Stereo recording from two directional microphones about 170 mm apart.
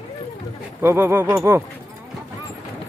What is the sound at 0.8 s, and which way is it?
Speech, 15° right (ahead or behind).